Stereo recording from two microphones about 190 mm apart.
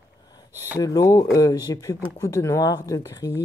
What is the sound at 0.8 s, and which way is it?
Speech, 20° left (ahead or behind).